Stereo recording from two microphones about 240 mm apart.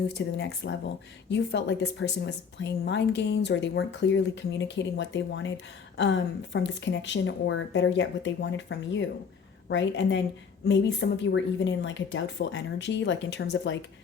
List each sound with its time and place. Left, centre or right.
0.1 s a woman's voice: left